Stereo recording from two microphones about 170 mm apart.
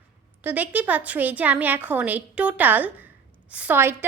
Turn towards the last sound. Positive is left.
turn(degrees=-10)  # may be behind; listen again after turning